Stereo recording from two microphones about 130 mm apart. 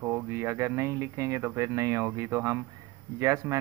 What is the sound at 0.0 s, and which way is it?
Speech, 15° right (ahead or behind).